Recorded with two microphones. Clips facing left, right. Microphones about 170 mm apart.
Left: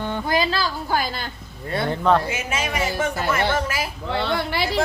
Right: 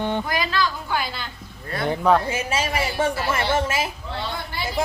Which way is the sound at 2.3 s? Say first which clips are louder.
Right 2 dB; 35° right (ahead or behind).